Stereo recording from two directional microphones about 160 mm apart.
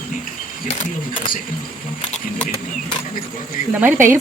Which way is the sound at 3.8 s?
15° right (ahead or behind).